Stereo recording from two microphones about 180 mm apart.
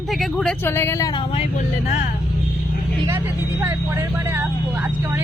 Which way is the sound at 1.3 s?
40° left (ahead or behind).